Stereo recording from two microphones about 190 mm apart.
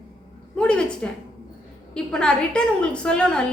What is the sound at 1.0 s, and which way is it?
A woman's voice, 5° left (ahead or behind).